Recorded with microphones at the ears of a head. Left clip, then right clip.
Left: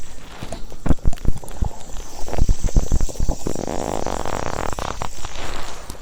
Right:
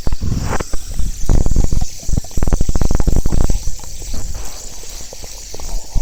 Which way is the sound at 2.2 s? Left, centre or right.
Right.